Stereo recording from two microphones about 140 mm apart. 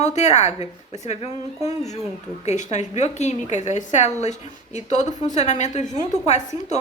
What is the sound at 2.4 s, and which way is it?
A woman's voice, 55° left (ahead or behind).